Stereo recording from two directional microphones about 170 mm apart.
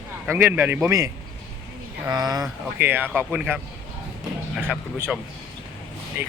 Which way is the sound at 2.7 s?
10° right (ahead or behind).